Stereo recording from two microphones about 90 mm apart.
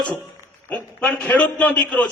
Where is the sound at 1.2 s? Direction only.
15° left (ahead or behind).